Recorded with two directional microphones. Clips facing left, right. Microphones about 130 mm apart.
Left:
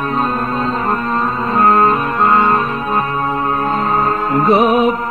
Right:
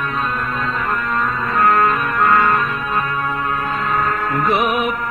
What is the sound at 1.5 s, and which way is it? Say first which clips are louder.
Music: left 3 dB; 30° left (ahead or behind).